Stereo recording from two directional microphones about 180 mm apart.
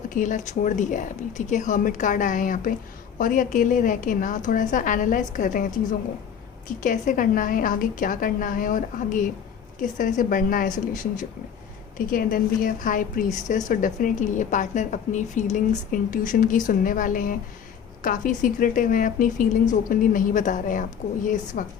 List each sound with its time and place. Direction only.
0.1 s a woman's voice: 45° left (ahead or behind)
6.8 s a woman's voice: 45° left (ahead or behind)